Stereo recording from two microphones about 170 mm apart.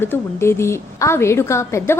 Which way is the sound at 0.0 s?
15° left (ahead or behind).